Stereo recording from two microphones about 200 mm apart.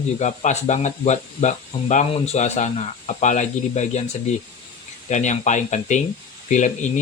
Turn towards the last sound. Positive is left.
turn(degrees=35)  # may be behind; listen again after turning